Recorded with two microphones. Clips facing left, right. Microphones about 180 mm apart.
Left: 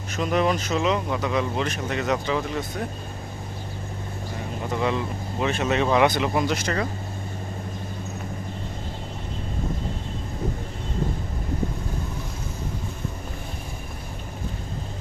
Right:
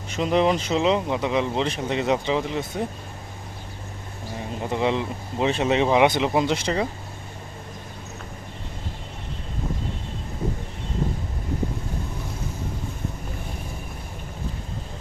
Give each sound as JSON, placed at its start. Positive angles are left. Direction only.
{"t": 0.2, "sound": "speech", "side_deg": -20}
{"t": 4.7, "sound": "speech", "side_deg": -20}